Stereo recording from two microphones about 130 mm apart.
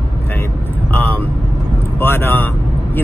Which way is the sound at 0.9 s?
10° left (ahead or behind).